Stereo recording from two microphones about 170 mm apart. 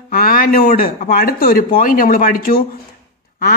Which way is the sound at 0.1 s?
55° left (ahead or behind).